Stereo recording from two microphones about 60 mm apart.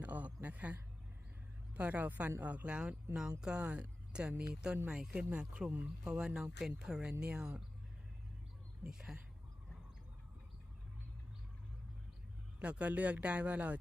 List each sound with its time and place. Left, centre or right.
0.0 s a sound: right
1.7 s speech: right
8.8 s speech: centre
12.5 s speech: right